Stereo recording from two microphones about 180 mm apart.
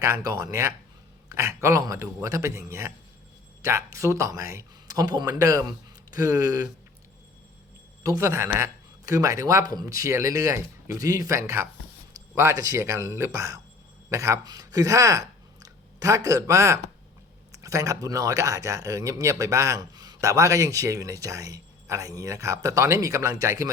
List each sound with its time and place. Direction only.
0.0 s speech: 15° right (ahead or behind)
8.0 s speech: 15° right (ahead or behind)